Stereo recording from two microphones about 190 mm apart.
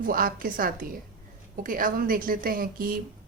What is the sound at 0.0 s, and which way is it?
Speech, 50° right (ahead or behind).